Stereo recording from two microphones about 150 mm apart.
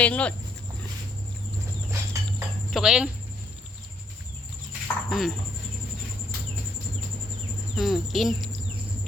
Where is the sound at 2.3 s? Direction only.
5° right (ahead or behind).